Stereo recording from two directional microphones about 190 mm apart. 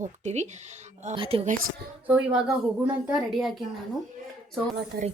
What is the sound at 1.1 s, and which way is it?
Speech, 30° right (ahead or behind).